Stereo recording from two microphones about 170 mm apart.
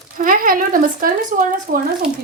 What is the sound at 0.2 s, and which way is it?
A woman's voice, 55° right (ahead or behind).